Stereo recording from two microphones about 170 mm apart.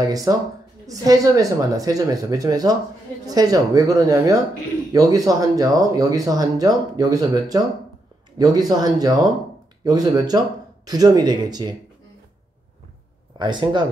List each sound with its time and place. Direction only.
0.0 s speech: 20° right (ahead or behind)
13.4 s speech: 25° right (ahead or behind)